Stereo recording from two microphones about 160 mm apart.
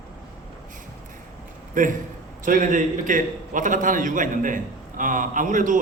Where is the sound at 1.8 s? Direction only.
55° right (ahead or behind).